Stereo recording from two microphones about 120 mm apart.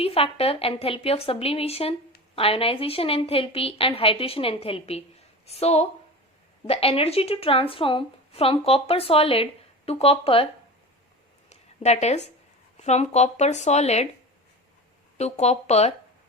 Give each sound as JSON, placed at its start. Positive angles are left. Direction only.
{"t": 0.0, "sound": "a woman's voice", "side_deg": 55}
{"t": 11.4, "sound": "a sound", "side_deg": 65}
{"t": 12.8, "sound": "speech", "side_deg": 70}
{"t": 15.2, "sound": "speech", "side_deg": 65}